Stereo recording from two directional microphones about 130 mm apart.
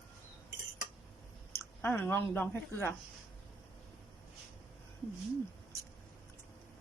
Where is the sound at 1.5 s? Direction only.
15° left (ahead or behind).